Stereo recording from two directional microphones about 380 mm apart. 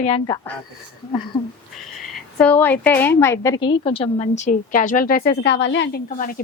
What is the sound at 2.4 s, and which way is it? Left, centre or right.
A woman's voice, centre.